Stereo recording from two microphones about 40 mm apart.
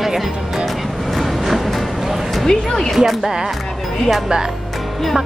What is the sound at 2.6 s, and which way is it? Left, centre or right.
Speech, centre.